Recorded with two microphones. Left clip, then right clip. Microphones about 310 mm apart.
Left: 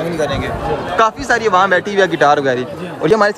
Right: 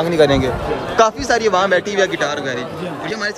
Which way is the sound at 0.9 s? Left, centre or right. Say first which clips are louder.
Even; centre.